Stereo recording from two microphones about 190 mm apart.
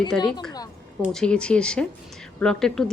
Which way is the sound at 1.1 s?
5° left (ahead or behind).